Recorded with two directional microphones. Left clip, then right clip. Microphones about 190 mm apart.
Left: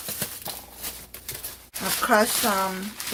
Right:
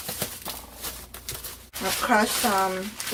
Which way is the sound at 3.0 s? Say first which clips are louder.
Even; 10° left (ahead or behind).